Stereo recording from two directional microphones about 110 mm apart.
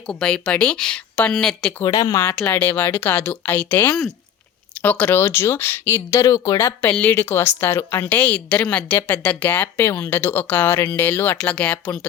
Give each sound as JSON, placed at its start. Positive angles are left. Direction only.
{"t": 0.1, "sound": "a woman's voice", "side_deg": 10}
{"t": 1.8, "sound": "speech", "side_deg": 30}
{"t": 2.4, "sound": "a woman's voice", "side_deg": 15}